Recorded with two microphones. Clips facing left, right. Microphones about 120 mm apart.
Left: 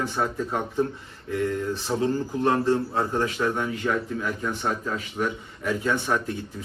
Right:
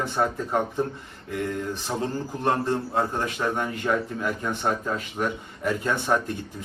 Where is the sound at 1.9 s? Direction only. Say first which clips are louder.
Left 5 dB; 20° right (ahead or behind).